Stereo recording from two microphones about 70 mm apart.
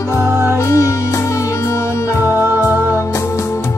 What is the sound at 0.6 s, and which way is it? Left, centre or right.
Music, left.